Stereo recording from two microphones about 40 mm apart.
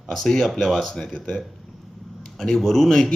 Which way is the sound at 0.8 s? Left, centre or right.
Centre.